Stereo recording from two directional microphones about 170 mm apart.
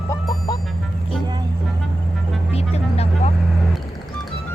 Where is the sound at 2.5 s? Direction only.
40° left (ahead or behind).